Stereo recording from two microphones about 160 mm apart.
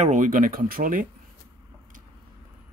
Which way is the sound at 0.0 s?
50° right (ahead or behind).